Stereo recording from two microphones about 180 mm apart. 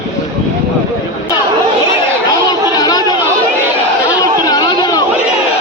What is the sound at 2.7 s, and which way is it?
Chatter, 20° left (ahead or behind).